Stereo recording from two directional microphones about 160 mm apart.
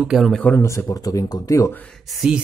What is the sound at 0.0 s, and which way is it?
Speech, centre (ahead or behind).